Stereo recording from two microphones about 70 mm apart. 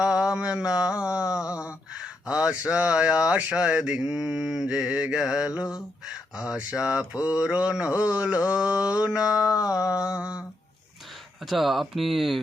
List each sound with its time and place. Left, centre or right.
0.0 s speech: centre
11.4 s speech: centre